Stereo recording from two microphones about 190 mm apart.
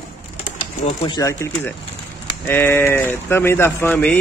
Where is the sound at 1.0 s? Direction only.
20° left (ahead or behind).